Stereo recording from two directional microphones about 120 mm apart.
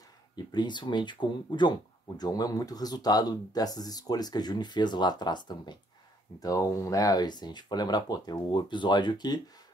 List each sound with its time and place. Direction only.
0.4 s speech: 35° left (ahead or behind)
6.4 s speech: 25° left (ahead or behind)